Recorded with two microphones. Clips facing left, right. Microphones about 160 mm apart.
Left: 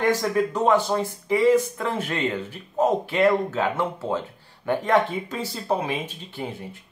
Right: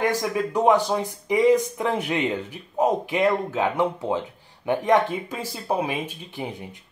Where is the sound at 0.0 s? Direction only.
10° right (ahead or behind).